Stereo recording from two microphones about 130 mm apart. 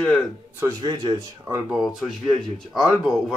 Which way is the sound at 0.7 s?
35° right (ahead or behind).